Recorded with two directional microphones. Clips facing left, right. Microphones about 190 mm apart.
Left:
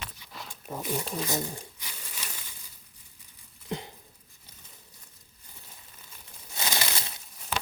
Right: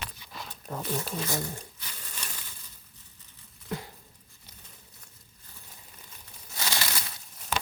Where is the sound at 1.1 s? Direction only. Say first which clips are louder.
Left 1 dB; 20° left (ahead or behind).